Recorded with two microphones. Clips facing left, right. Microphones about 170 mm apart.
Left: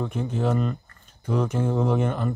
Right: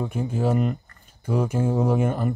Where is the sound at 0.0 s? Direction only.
10° right (ahead or behind).